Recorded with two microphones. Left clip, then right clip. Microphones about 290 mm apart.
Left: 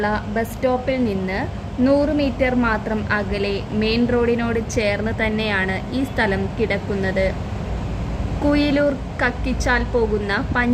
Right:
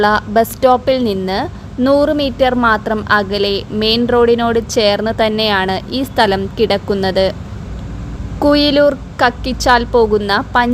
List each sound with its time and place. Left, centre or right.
0.0 s a woman's voice: right
8.4 s a woman's voice: right